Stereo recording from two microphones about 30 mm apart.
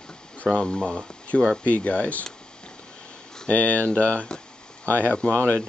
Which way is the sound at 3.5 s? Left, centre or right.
Left.